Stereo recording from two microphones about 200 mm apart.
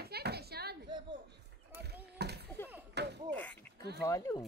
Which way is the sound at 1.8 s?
55° right (ahead or behind).